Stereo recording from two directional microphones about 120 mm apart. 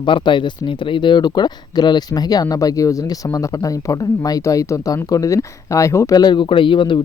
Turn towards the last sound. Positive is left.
turn(degrees=45)  # may be behind; listen again after turning